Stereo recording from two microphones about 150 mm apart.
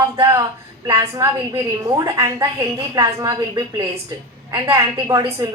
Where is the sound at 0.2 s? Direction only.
20° right (ahead or behind).